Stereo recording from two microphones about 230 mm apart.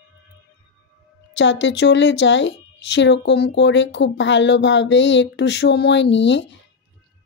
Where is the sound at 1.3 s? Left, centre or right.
Left.